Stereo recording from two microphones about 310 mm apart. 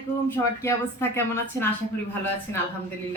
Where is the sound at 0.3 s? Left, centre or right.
Centre.